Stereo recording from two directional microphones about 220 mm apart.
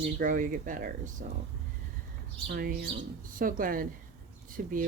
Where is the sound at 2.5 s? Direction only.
40° right (ahead or behind).